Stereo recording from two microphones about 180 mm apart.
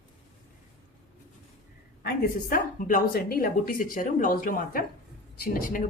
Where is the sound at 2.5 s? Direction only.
50° left (ahead or behind).